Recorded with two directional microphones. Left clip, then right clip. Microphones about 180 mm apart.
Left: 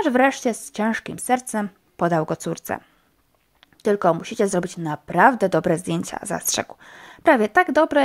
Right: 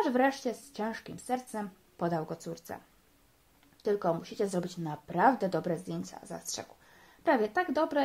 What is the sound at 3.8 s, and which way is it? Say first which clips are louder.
Speech: left 11 dB; 40° left (ahead or behind).